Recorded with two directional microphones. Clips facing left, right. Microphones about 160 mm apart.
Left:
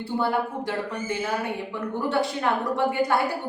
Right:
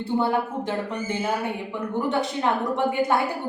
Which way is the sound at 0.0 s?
20° right (ahead or behind).